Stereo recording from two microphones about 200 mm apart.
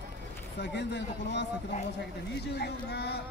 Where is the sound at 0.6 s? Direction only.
60° left (ahead or behind).